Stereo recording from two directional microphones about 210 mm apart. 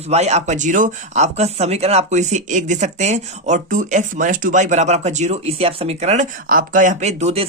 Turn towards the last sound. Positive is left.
turn(degrees=-30)  # may be behind; listen again after turning